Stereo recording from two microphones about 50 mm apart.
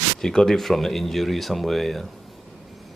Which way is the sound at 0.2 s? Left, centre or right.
Centre.